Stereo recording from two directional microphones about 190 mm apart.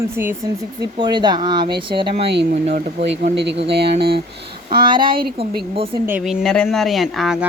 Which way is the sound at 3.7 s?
60° right (ahead or behind).